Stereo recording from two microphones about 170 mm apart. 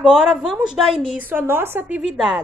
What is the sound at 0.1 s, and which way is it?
A woman's voice, 5° right (ahead or behind).